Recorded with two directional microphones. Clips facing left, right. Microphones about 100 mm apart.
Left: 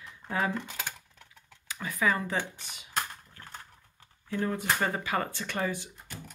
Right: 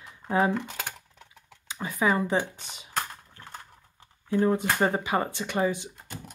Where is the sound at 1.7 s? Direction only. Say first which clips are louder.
Right 3 dB; 25° right (ahead or behind).